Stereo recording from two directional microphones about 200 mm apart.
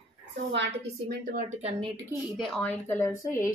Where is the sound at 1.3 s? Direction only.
40° right (ahead or behind).